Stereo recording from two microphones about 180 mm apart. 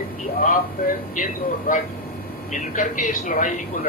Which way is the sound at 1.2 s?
45° left (ahead or behind).